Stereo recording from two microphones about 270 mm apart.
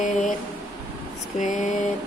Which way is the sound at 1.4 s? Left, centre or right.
Left.